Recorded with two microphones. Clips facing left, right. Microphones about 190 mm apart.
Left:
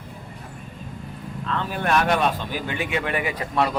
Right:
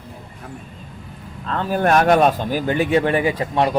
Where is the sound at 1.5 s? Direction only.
40° right (ahead or behind).